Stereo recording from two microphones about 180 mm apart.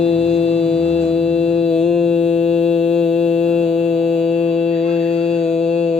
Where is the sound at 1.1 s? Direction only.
5° left (ahead or behind).